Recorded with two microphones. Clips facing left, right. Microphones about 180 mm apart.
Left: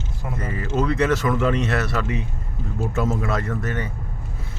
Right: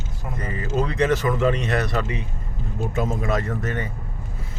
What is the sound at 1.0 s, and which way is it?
A man's voice, 15° right (ahead or behind).